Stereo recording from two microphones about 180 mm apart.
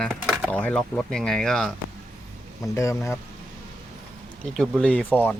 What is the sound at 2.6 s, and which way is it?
Speech, 15° left (ahead or behind).